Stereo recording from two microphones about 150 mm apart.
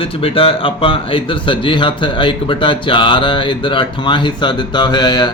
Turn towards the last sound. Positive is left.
turn(degrees=30)  # may be behind; listen again after turning